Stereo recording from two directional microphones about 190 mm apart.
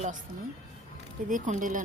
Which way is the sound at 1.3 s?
45° right (ahead or behind).